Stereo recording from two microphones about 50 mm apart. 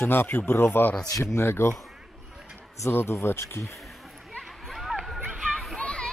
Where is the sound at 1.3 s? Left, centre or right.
Left.